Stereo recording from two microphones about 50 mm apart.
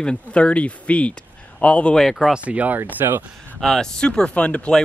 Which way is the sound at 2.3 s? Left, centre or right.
Right.